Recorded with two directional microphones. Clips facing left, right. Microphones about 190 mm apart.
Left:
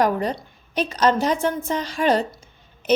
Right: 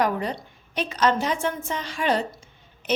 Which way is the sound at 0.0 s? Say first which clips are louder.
Left 4 dB; 40° left (ahead or behind).